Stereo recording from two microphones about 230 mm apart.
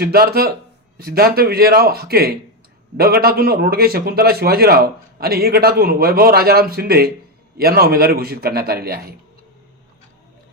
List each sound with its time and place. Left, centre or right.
0.0 s a man's voice: right